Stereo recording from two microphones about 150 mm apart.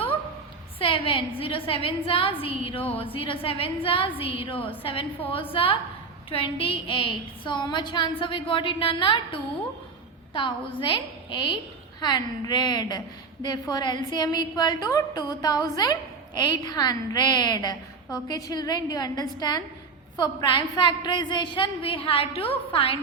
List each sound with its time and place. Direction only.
0.8 s a woman's voice: 35° left (ahead or behind)